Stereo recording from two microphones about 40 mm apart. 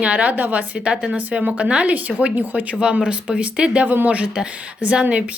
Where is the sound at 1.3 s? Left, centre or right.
Right.